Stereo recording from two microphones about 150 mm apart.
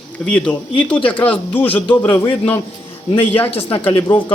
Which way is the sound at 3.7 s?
35° left (ahead or behind).